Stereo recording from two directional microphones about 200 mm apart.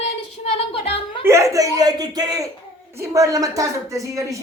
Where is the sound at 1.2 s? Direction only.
15° right (ahead or behind).